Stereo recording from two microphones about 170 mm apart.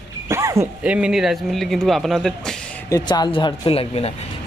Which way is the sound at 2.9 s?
25° left (ahead or behind).